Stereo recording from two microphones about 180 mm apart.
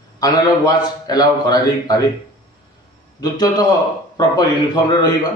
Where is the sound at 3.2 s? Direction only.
20° left (ahead or behind).